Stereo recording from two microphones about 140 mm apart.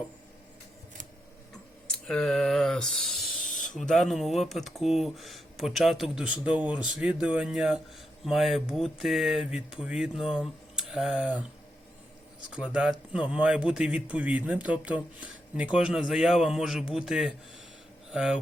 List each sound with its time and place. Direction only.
1.9 s a sound: 5° left (ahead or behind)
3.4 s spray: 70° left (ahead or behind)
3.8 s speech: centre (ahead or behind)
12.5 s a man's voice: 5° right (ahead or behind)